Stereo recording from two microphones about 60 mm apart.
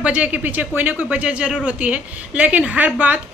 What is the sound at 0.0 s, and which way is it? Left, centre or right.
A woman's voice, right.